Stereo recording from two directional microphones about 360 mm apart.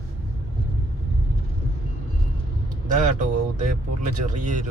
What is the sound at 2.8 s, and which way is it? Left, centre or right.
Speech, right.